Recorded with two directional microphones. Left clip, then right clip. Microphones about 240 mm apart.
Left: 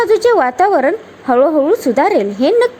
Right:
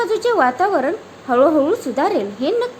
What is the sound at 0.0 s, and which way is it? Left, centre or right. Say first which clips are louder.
A woman's voice: left 5 dB; left.